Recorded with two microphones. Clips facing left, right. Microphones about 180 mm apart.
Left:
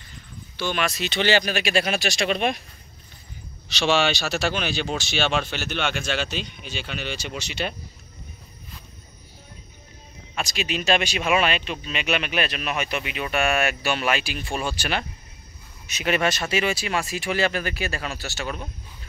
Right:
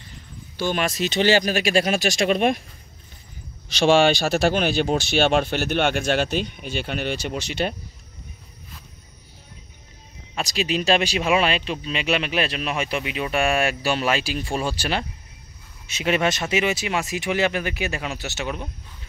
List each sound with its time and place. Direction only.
0.6 s speech: 45° right (ahead or behind)
3.7 s speech: 50° right (ahead or behind)
10.3 s speech: 35° right (ahead or behind); by 18.7 s 20° right (ahead or behind)